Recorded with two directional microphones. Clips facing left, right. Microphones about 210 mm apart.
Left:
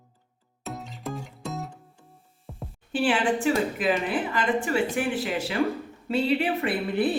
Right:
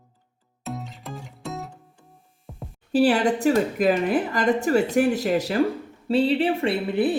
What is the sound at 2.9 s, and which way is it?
A woman's voice, 40° right (ahead or behind).